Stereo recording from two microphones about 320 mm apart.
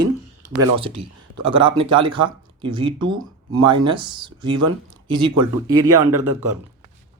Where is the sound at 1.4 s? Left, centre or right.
Centre.